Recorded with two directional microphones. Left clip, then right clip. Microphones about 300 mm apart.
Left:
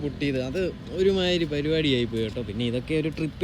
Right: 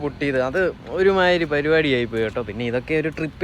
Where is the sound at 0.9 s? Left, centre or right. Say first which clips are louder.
Right 6 dB; centre.